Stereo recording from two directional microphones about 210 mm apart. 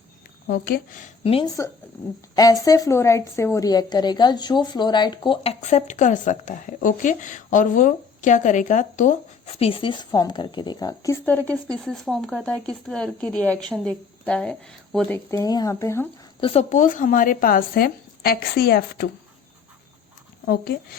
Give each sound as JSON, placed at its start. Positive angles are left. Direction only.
{"t": 0.4, "sound": "speech", "side_deg": 45}
{"t": 1.2, "sound": "a woman's voice", "side_deg": 25}
{"t": 11.4, "sound": "speech", "side_deg": 5}
{"t": 16.4, "sound": "speech", "side_deg": 30}